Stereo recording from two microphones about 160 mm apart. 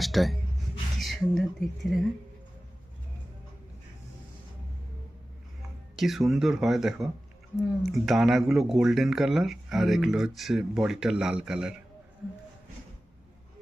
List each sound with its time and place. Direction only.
0.0 s a sound: centre (ahead or behind)
0.9 s speech: centre (ahead or behind)
6.0 s speech: centre (ahead or behind)